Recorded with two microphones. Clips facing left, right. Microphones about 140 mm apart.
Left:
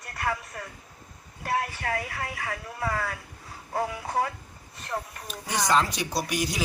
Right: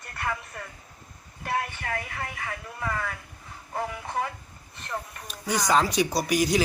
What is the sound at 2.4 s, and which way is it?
Speech, 30° left (ahead or behind).